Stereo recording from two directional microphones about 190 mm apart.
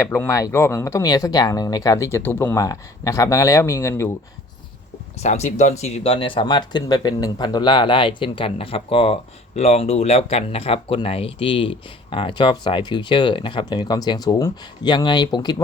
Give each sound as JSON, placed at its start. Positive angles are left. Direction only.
{"t": 0.0, "sound": "speech", "side_deg": 15}
{"t": 5.2, "sound": "speech", "side_deg": 35}